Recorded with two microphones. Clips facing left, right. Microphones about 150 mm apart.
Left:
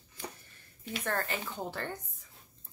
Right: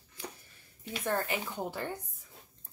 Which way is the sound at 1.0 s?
15° right (ahead or behind).